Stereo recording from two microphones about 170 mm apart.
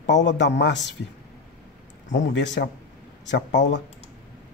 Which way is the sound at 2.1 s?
90° left.